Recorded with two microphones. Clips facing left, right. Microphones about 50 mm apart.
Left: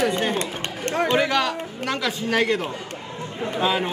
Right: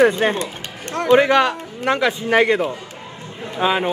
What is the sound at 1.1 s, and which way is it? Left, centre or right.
A man's voice, centre.